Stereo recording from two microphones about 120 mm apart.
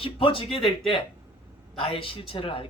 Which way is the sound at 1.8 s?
50° left (ahead or behind).